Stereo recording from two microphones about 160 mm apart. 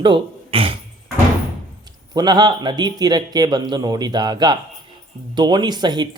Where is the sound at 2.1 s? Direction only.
25° right (ahead or behind).